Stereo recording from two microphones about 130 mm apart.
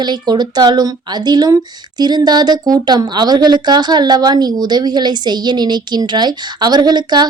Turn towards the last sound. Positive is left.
turn(degrees=-35)  # may be behind; listen again after turning